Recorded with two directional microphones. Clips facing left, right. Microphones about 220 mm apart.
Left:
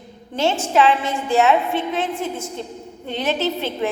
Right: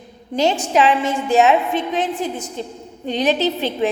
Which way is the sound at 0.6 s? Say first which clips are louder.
Right 1 dB; 15° right (ahead or behind).